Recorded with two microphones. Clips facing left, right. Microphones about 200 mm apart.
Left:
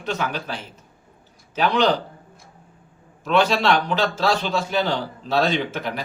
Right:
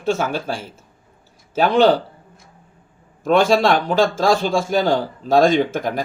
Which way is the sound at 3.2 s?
45° right (ahead or behind).